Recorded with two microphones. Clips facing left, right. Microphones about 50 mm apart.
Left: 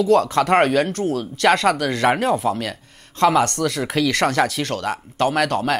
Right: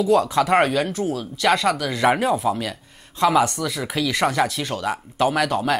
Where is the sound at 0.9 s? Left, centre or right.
Left.